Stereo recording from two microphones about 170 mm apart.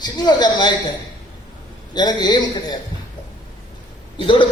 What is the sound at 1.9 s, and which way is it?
Speech, 25° left (ahead or behind).